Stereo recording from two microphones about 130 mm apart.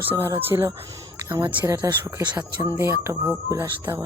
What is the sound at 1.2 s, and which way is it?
Speech, 25° right (ahead or behind).